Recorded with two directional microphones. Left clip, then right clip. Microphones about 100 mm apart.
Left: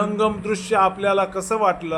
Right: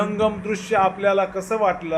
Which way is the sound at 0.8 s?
40° left (ahead or behind).